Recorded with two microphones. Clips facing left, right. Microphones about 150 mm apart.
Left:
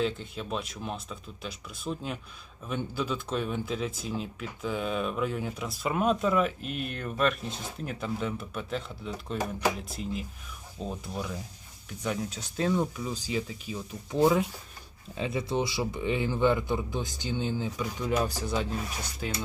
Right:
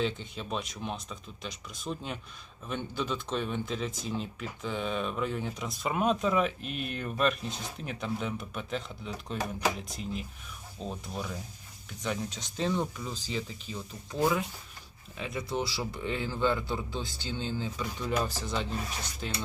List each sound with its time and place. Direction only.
0.0 s speech: centre (ahead or behind)
14.2 s speech: 20° left (ahead or behind)